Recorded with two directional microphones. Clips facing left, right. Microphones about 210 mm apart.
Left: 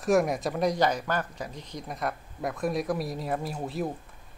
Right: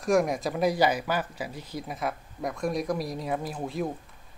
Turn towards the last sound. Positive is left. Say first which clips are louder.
# even
turn(degrees=0)  # may be behind; listen again after turning